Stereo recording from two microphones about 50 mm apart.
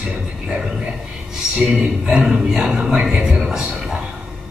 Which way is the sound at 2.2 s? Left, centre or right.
Centre.